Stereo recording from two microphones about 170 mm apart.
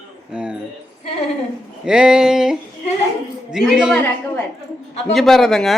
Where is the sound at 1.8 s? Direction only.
5° right (ahead or behind).